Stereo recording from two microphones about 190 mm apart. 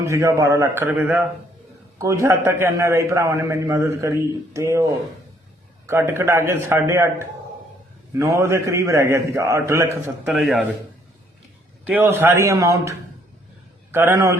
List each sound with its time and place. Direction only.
0.0 s a man's voice: 15° right (ahead or behind)
10.2 s speech: centre (ahead or behind)
11.9 s a man's voice: 10° right (ahead or behind)
13.9 s a man's voice: 15° right (ahead or behind)